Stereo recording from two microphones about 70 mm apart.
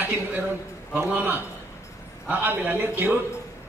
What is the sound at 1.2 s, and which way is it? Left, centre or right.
A man's voice, right.